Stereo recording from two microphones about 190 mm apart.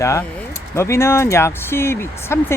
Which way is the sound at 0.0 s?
15° left (ahead or behind).